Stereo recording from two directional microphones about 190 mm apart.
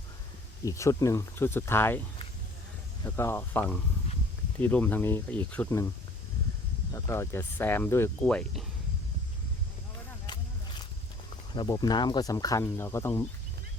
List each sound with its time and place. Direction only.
0.6 s speech: 15° left (ahead or behind)
3.2 s speech: 10° left (ahead or behind)
6.9 s speech: 15° left (ahead or behind)
10.2 s a sound: 25° left (ahead or behind)
11.5 s speech: 20° left (ahead or behind)